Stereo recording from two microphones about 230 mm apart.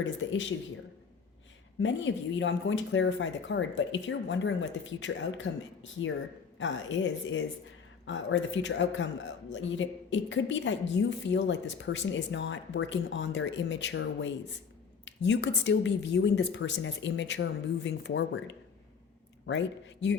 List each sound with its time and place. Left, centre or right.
0.0 s speech: left
1.8 s a woman's voice: left